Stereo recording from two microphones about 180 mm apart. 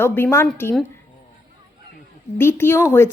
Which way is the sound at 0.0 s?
15° left (ahead or behind).